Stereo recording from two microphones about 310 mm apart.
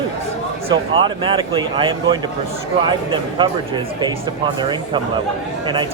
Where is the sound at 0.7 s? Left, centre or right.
Centre.